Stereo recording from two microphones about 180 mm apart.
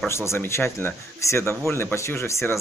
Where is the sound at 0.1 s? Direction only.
15° left (ahead or behind).